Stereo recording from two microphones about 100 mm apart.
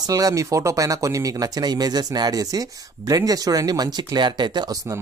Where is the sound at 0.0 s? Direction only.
35° right (ahead or behind).